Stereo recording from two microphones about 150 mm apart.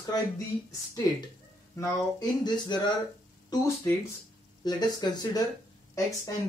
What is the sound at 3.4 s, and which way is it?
Speech, 20° left (ahead or behind).